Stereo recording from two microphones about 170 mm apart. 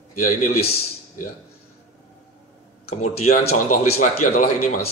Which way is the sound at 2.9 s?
40° left (ahead or behind).